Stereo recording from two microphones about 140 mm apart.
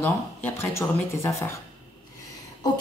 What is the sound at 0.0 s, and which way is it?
Speech, 15° left (ahead or behind).